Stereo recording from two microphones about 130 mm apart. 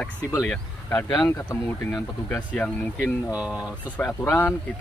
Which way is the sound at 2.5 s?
10° left (ahead or behind).